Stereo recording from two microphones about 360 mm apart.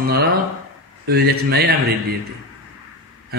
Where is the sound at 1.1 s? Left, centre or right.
Right.